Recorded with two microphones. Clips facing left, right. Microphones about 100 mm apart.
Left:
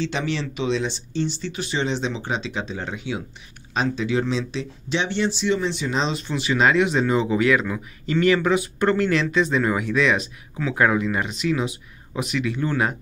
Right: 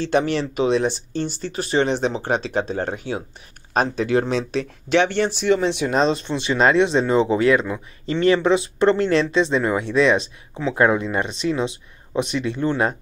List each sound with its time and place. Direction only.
0.0 s speech: 50° right (ahead or behind)
6.1 s speech: 30° right (ahead or behind)